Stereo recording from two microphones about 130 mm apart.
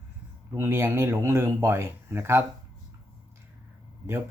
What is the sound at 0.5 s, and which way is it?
Speech, 20° right (ahead or behind).